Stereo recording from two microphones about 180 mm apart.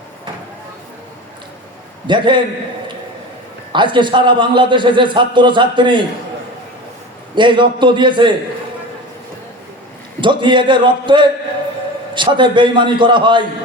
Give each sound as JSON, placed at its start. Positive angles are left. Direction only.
{"t": 2.0, "sound": "a man's voice", "side_deg": -25}
{"t": 3.7, "sound": "a man's voice", "side_deg": -25}
{"t": 7.3, "sound": "a man's voice", "side_deg": -25}
{"t": 10.2, "sound": "a man's voice", "side_deg": -25}